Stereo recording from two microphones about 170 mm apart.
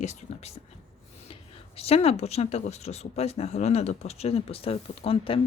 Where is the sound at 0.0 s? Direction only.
40° left (ahead or behind).